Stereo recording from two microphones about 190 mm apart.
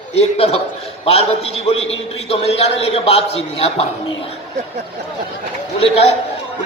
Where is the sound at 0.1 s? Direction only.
35° left (ahead or behind).